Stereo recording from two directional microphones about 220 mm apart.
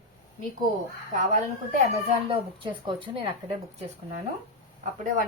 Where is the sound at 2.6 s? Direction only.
20° right (ahead or behind).